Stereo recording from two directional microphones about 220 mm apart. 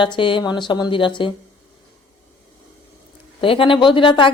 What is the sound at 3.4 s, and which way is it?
Speech, 25° left (ahead or behind).